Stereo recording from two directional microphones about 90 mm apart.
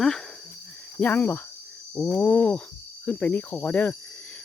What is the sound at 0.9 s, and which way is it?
Cricket, 20° left (ahead or behind).